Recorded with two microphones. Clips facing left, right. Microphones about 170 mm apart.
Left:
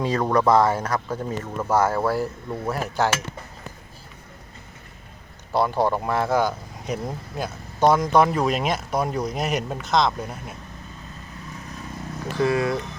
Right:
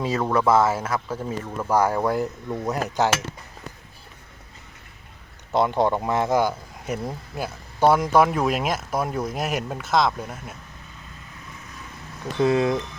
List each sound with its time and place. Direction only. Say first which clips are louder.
0.0 s speech: left 1 dB; 5° right (ahead or behind)
1.7 s cutlery: even; 15° right (ahead or behind)
5.5 s speech: right 1 dB; 20° right (ahead or behind); by 10.5 s centre (ahead or behind)
12.4 s speech: right 2 dB; 25° right (ahead or behind)